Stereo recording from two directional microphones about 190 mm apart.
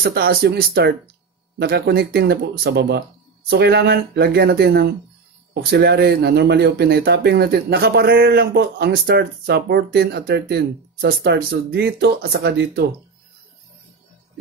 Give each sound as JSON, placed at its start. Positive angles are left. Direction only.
{"t": 0.0, "sound": "speech", "side_deg": -55}